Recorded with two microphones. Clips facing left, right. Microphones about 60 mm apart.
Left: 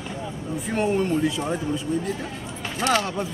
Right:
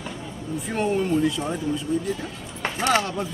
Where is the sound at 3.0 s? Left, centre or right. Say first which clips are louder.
Even; centre.